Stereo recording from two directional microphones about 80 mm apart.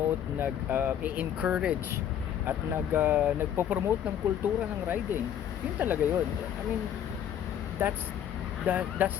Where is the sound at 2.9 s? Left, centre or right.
Right.